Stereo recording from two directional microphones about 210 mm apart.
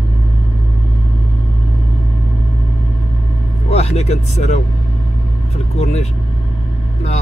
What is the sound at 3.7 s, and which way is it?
Speech, 30° left (ahead or behind).